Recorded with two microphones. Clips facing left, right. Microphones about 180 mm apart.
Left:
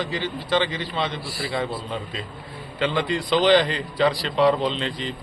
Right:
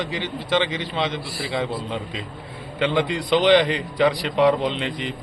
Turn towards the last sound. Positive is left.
turn(degrees=-20)  # may be behind; listen again after turning